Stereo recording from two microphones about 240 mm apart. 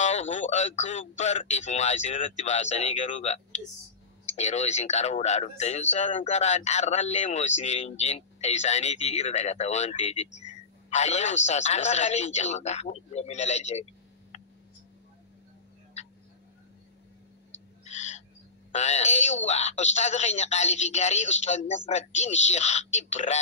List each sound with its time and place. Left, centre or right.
0.0 s speech: left
14.3 s a sound: left
17.8 s owl: left
18.7 s speech: left